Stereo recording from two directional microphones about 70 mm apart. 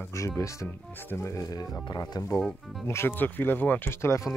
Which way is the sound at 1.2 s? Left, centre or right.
Left.